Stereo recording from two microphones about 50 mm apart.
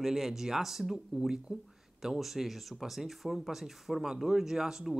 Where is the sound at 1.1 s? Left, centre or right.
Centre.